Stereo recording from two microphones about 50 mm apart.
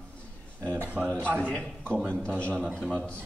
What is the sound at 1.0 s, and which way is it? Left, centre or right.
A man's voice, left.